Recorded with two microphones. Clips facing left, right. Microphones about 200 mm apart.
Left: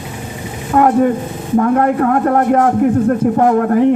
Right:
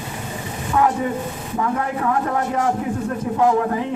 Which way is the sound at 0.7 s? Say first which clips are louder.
Left 8 dB; 55° left (ahead or behind).